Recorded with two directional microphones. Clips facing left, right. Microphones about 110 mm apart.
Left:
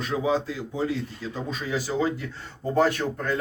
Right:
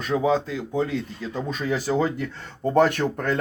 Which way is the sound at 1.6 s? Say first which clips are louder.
Right 3 dB; 50° right (ahead or behind).